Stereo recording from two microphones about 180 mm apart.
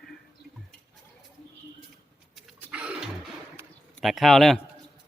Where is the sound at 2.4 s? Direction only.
5° right (ahead or behind).